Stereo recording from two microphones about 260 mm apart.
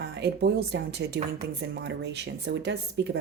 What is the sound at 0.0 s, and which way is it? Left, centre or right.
Speech, right.